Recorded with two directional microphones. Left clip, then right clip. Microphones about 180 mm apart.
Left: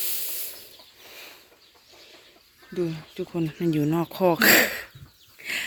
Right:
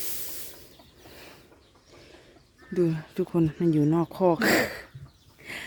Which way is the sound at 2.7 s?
45° right (ahead or behind).